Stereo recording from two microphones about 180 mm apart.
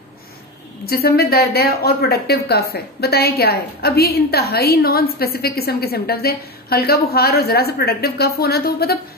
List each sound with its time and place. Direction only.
0.8 s a woman's voice: 60° left (ahead or behind)